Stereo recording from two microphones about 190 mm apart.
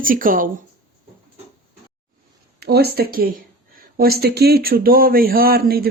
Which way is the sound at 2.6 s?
55° right (ahead or behind).